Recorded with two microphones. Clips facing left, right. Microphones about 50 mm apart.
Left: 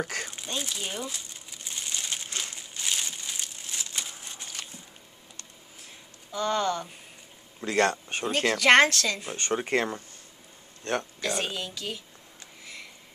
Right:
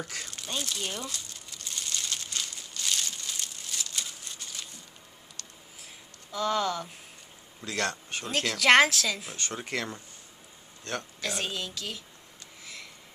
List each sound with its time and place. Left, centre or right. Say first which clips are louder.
0.0 s speech: left 6 dB; left
0.6 s crumpling: left 1 dB; centre
6.3 s a woman's voice: left 1 dB; centre
7.6 s speech: left 7 dB; left
8.5 s a woman's voice: left 1 dB; centre
9.3 s speech: left 7 dB; left
11.1 s a woman's voice: left 3 dB; centre